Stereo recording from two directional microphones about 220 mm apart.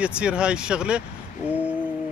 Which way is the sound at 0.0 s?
5° right (ahead or behind).